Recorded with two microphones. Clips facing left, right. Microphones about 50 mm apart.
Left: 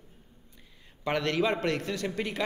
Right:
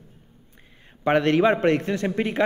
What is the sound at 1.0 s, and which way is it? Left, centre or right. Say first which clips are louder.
Speech: right 9 dB; right.